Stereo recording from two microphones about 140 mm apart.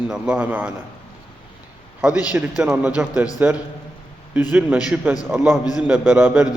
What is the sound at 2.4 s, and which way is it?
Speech, 10° right (ahead or behind).